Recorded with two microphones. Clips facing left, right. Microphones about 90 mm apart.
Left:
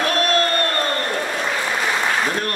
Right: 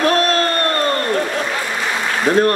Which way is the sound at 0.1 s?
35° right (ahead or behind).